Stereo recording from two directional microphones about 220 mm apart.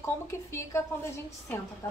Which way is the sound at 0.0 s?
15° left (ahead or behind).